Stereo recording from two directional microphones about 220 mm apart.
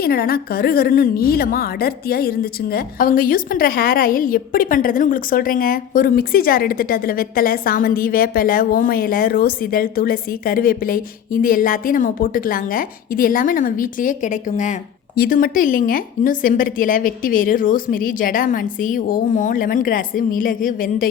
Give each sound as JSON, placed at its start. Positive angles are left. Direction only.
{"t": 0.0, "sound": "a woman's voice", "side_deg": 45}